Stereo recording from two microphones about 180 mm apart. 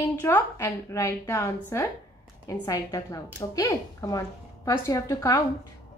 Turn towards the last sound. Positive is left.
turn(degrees=20)  # may be behind; listen again after turning